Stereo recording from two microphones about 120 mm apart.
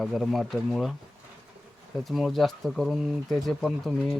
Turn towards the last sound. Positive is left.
turn(degrees=5)  # may be behind; listen again after turning